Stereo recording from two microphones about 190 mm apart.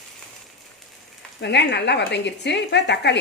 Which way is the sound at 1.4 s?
65° left (ahead or behind).